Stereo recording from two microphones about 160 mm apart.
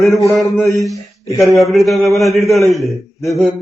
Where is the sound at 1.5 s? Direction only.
Centre (ahead or behind).